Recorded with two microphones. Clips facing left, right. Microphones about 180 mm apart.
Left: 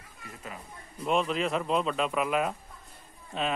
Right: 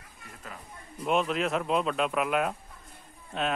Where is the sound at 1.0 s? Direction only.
Centre (ahead or behind).